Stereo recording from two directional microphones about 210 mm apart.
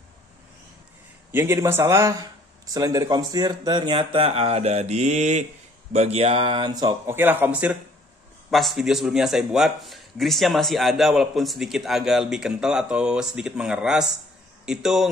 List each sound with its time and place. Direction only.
1.3 s a man's voice: 10° right (ahead or behind)